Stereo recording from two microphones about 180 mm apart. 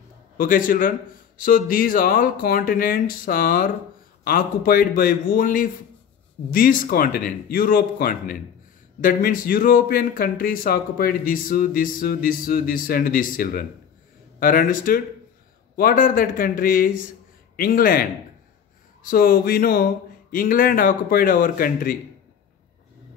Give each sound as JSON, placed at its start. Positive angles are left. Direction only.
{"t": 0.4, "sound": "speech", "side_deg": 50}
{"t": 19.0, "sound": "speech", "side_deg": 50}